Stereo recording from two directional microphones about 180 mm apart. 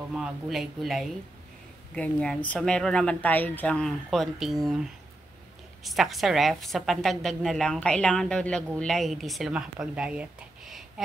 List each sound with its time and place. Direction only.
0.1 s speech: centre (ahead or behind)
5.9 s speech: centre (ahead or behind)